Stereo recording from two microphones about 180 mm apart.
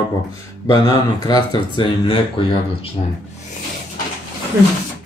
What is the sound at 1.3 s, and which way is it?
Speech, 25° left (ahead or behind).